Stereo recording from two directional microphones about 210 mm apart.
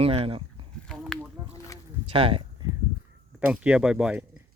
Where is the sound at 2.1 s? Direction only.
25° right (ahead or behind).